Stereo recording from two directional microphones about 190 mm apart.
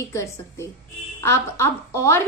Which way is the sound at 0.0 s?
15° left (ahead or behind).